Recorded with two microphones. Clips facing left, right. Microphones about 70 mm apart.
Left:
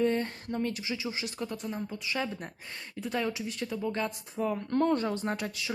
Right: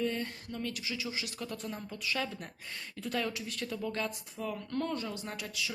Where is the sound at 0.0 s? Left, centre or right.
Left.